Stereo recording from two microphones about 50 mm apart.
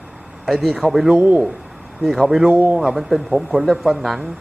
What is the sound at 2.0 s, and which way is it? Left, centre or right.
Speech, centre.